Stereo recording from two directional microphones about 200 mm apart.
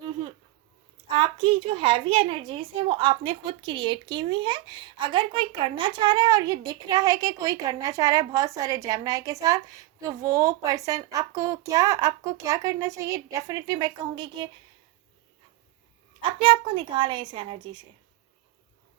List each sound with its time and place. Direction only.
1.0 s a woman's voice: 25° right (ahead or behind)
16.4 s a child's voice: 25° right (ahead or behind)